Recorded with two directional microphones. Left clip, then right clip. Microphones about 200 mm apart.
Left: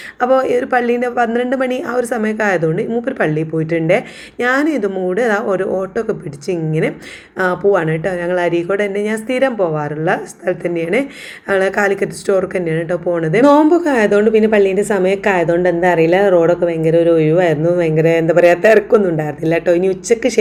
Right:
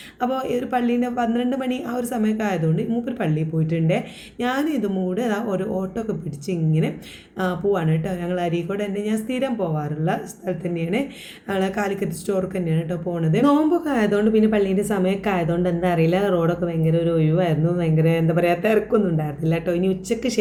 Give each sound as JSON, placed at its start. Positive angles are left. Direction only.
{"t": 0.2, "sound": "speech", "side_deg": 15}